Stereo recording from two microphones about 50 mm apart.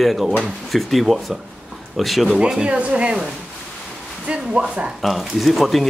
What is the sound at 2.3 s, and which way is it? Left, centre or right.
Speech, centre.